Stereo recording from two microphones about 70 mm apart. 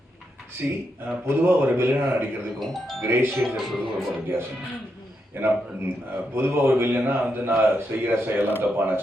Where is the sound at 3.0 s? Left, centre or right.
Right.